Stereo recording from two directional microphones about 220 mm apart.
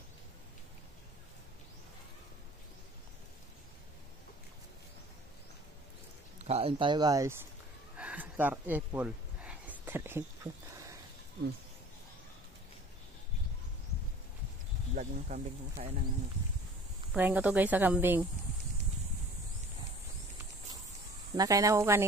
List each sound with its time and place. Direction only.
6.4 s speech: 25° right (ahead or behind)
8.0 s a sound: 5° right (ahead or behind)
15.0 s speech: 35° right (ahead or behind)
17.1 s a woman's voice: 5° right (ahead or behind)
21.3 s a woman's voice: 15° right (ahead or behind)